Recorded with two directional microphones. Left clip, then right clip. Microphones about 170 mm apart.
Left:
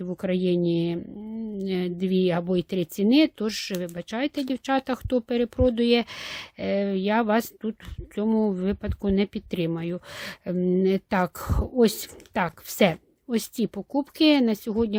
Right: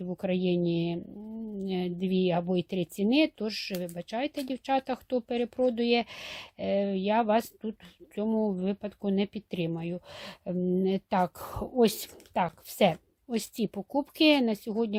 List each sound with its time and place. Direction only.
0.0 s a woman's voice: 30° left (ahead or behind)